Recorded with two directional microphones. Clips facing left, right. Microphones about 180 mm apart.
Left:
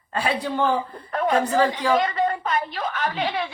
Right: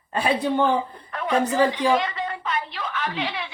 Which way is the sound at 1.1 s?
40° left (ahead or behind).